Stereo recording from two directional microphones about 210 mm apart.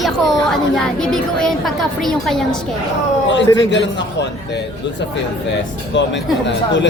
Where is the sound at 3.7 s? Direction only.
60° left (ahead or behind).